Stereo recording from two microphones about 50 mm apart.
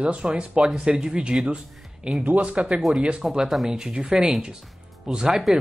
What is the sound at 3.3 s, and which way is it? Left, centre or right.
Speech, centre.